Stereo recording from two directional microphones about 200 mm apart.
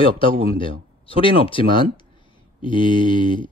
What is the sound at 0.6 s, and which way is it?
Speech, 25° left (ahead or behind).